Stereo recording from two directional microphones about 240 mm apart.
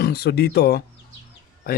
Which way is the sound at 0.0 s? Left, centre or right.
Left.